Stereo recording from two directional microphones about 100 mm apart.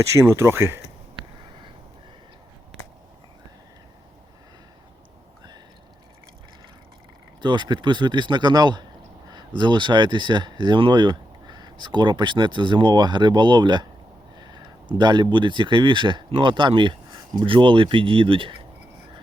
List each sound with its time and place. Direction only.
0.0 s speech: 30° right (ahead or behind)
7.4 s speech: 50° right (ahead or behind)